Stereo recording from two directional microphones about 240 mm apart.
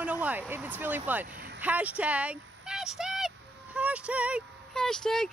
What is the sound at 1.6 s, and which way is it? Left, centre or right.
Speech, centre.